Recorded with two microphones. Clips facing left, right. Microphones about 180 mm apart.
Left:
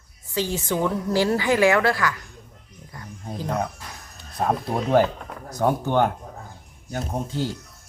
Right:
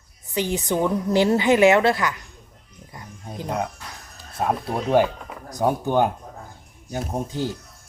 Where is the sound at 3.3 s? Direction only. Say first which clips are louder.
Left 1 dB; 15° right (ahead or behind).